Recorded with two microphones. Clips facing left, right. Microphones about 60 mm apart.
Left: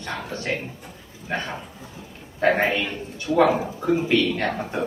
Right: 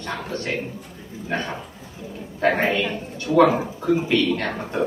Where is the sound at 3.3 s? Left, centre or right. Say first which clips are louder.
Right 3 dB; right.